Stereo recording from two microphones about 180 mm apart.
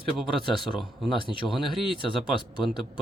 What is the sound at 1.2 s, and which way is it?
Speech, 25° left (ahead or behind).